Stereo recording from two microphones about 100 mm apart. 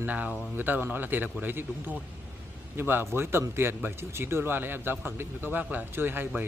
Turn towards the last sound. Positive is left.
turn(degrees=-20)  # may be behind; listen again after turning